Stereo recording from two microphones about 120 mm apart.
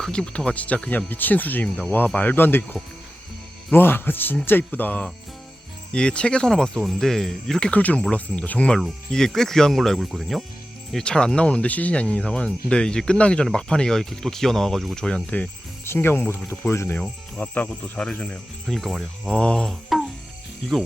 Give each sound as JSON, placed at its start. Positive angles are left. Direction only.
{"t": 0.0, "sound": "speech", "side_deg": 5}